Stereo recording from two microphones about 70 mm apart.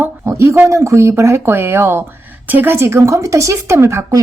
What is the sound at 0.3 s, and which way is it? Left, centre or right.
Speech, right.